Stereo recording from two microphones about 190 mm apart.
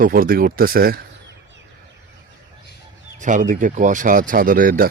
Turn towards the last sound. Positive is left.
turn(degrees=-50)  # may be behind; listen again after turning